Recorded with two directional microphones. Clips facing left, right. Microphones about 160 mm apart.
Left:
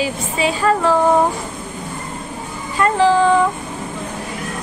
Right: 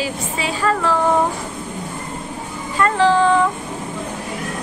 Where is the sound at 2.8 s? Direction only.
10° left (ahead or behind).